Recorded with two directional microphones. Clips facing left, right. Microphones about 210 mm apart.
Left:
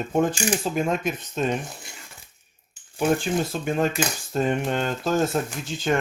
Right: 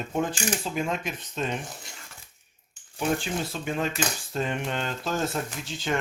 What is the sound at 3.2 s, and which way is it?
Cutlery, 45° left (ahead or behind).